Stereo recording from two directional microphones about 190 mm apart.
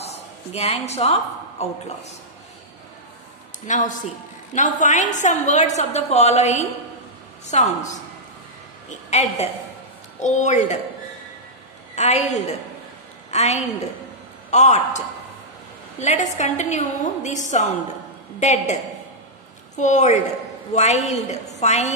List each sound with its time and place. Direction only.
0.0 s a woman's voice: 35° left (ahead or behind)
3.6 s a woman's voice: 40° left (ahead or behind)
9.1 s a woman's voice: 35° left (ahead or behind)
11.9 s a woman's voice: 35° left (ahead or behind)
13.3 s a woman's voice: 35° left (ahead or behind)
19.8 s a woman's voice: 40° left (ahead or behind)